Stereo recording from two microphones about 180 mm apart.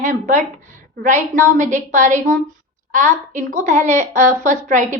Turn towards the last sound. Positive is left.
turn(degrees=-40)  # may be behind; listen again after turning